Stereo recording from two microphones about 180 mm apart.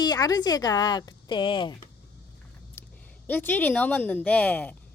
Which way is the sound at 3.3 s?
10° left (ahead or behind).